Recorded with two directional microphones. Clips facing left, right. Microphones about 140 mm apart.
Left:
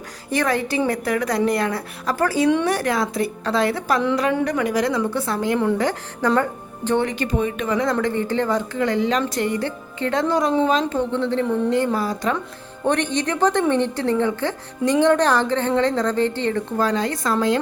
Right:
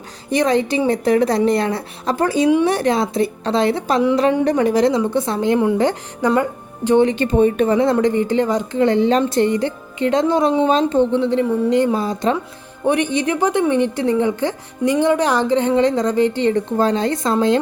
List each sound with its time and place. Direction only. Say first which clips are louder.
0.3 s speech: right 5 dB; 20° right (ahead or behind)
12.8 s a woman's voice: right 3 dB; 10° right (ahead or behind)